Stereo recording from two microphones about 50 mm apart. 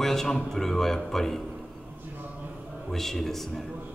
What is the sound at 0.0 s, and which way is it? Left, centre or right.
Music, centre.